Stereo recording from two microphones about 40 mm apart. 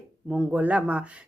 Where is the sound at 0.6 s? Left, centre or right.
Right.